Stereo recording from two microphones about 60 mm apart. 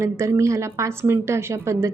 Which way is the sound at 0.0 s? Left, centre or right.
Right.